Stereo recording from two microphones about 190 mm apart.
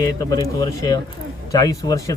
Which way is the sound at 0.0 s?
20° left (ahead or behind).